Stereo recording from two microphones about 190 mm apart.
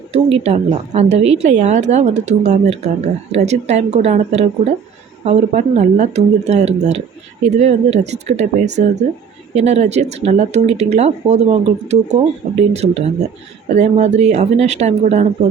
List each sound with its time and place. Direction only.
0.1 s a woman's voice: 35° right (ahead or behind)